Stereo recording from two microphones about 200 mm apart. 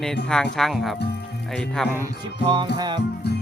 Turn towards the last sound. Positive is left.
turn(degrees=55)  # may be behind; listen again after turning